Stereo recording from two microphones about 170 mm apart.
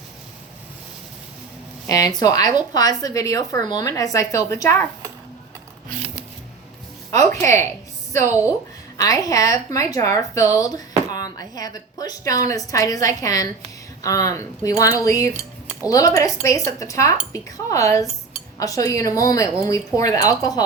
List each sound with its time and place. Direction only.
1.9 s a woman's voice: 20° left (ahead or behind)
7.1 s speech: 15° left (ahead or behind)
9.0 s a woman's voice: 20° left (ahead or behind)